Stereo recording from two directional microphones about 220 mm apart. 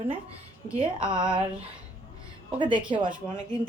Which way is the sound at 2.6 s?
20° right (ahead or behind).